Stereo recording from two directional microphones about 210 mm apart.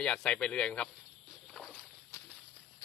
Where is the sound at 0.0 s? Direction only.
5° left (ahead or behind).